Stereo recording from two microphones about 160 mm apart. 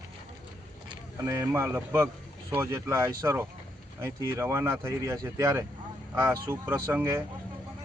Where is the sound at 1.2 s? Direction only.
20° right (ahead or behind).